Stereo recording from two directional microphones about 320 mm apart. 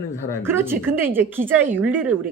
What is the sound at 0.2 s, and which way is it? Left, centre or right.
Speech, centre.